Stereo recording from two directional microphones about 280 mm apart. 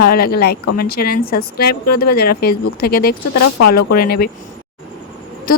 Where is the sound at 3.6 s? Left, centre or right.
Left.